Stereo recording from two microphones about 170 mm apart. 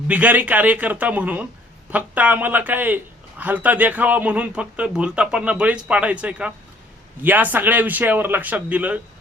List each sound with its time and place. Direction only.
0.1 s speech: 10° right (ahead or behind)